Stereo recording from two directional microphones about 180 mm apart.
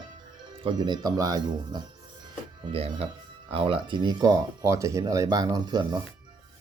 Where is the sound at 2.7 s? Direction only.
30° right (ahead or behind).